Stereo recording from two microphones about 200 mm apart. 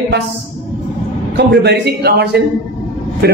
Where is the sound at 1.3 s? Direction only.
60° right (ahead or behind).